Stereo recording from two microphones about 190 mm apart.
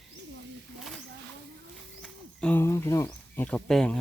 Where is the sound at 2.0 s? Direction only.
5° right (ahead or behind).